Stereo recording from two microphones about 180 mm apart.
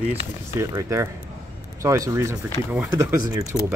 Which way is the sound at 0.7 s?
15° right (ahead or behind).